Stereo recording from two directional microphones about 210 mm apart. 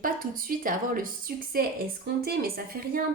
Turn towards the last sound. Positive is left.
turn(degrees=-45)  # may be behind; listen again after turning